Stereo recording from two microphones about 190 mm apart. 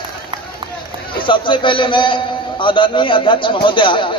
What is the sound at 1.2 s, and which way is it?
A man's voice, 25° left (ahead or behind).